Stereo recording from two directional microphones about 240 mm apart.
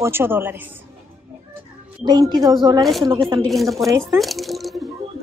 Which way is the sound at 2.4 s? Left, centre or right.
Centre.